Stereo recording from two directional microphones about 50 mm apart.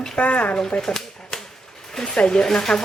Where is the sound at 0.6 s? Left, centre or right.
Centre.